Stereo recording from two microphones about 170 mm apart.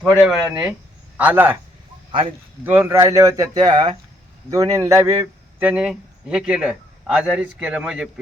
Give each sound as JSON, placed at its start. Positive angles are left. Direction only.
{"t": 0.0, "sound": "a man's voice", "side_deg": -5}
{"t": 2.6, "sound": "a man's voice", "side_deg": -10}